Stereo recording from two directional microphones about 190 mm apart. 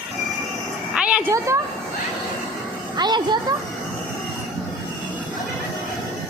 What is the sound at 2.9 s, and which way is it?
Speech, 20° right (ahead or behind).